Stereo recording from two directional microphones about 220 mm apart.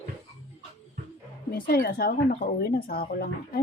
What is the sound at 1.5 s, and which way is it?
A woman's voice, 40° left (ahead or behind).